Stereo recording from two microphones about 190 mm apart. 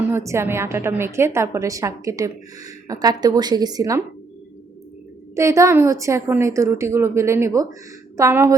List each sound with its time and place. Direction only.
0.1 s a woman's voice: 15° right (ahead or behind)
5.3 s a woman's voice: 15° right (ahead or behind)